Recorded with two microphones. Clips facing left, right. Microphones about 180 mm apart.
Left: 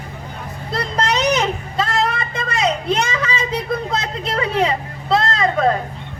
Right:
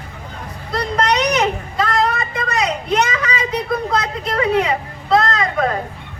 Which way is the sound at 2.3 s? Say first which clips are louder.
Even; 25° left (ahead or behind).